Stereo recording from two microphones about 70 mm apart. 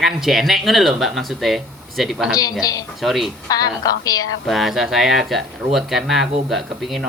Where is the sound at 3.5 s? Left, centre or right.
Left.